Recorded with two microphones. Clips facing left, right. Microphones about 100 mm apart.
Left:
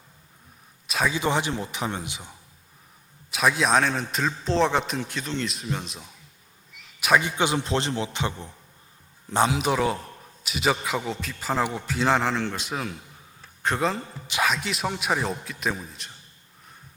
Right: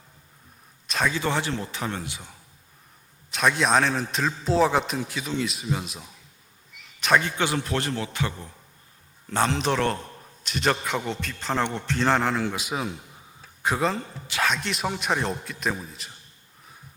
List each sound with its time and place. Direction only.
0.9 s a sound: 5° left (ahead or behind)
1.1 s speech: 15° left (ahead or behind)
3.3 s a man's voice: 5° left (ahead or behind); by 8.4 s 20° left (ahead or behind)
9.3 s a man's voice: 10° left (ahead or behind)